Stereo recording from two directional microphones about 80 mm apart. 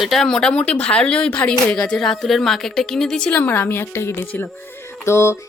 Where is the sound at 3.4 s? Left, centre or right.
Left.